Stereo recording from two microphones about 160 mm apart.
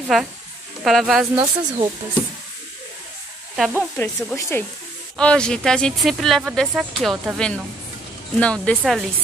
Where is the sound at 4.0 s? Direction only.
15° left (ahead or behind).